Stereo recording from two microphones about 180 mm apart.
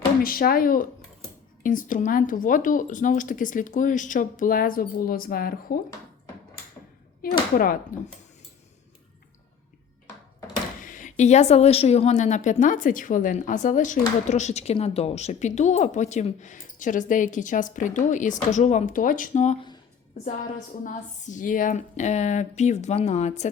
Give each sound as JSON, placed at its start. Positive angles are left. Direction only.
{"t": 0.2, "sound": "speech", "side_deg": 55}
{"t": 7.2, "sound": "speech", "side_deg": 55}
{"t": 10.8, "sound": "speech", "side_deg": 45}
{"t": 20.8, "sound": "speech", "side_deg": 45}